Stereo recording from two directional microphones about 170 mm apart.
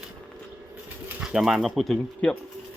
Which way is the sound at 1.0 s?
5° right (ahead or behind).